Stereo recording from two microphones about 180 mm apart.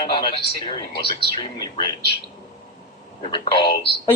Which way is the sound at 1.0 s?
30° left (ahead or behind).